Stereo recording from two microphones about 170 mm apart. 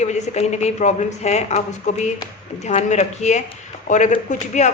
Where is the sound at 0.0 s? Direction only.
40° left (ahead or behind).